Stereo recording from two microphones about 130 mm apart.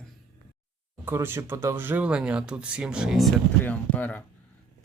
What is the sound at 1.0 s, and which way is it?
Speech, 15° right (ahead or behind).